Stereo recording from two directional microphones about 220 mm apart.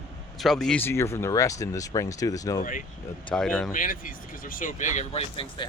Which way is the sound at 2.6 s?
35° left (ahead or behind).